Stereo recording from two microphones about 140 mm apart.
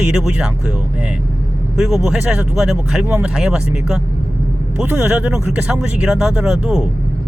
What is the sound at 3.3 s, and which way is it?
Speech, 5° right (ahead or behind).